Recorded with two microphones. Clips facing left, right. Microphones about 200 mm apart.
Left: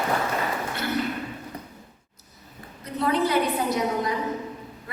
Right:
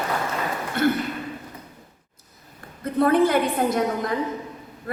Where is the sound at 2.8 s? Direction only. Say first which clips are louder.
Right 6 dB; 55° right (ahead or behind).